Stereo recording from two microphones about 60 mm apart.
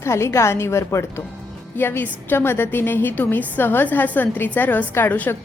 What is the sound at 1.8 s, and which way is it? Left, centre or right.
A woman's voice, left.